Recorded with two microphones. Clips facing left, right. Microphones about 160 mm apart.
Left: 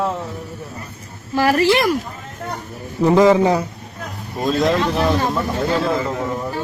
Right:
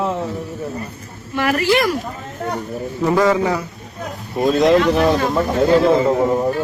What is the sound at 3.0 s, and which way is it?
Speech, 20° left (ahead or behind).